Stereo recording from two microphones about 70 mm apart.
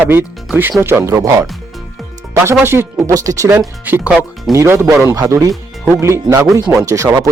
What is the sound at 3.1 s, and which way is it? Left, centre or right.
Speech, right.